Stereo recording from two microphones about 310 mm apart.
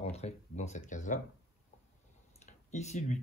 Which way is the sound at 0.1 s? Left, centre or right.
Left.